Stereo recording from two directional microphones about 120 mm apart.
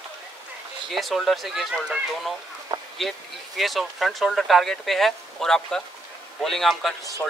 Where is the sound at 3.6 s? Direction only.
Centre (ahead or behind).